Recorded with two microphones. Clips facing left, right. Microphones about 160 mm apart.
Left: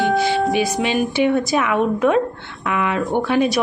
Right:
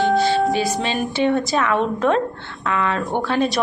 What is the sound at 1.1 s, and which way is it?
Speech, 15° left (ahead or behind).